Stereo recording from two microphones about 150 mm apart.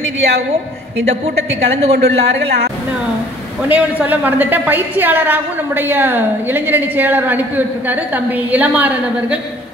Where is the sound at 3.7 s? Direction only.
10° right (ahead or behind).